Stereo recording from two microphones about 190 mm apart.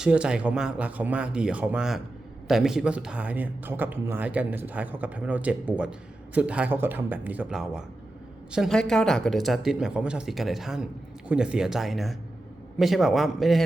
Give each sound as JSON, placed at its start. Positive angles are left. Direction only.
{"t": 0.0, "sound": "speech", "side_deg": -5}